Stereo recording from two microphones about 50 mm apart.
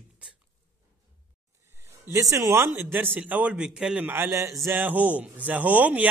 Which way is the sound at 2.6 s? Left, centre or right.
Right.